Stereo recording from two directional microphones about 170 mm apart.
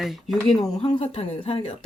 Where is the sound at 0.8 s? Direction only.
35° left (ahead or behind).